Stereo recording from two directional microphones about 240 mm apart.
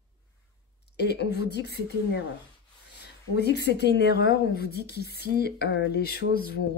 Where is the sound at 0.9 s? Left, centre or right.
Left.